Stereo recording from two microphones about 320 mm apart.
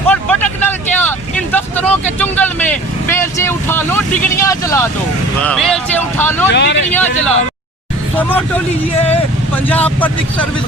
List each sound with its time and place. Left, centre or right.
0.1 s vehicle: centre
1.5 s speech: centre
6.5 s speech: left
6.9 s speech: centre
9.6 s speech: centre